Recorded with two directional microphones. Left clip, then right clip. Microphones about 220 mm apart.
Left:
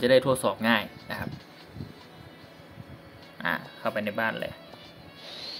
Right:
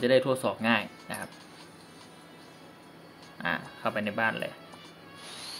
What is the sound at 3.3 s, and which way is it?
Speech, centre (ahead or behind).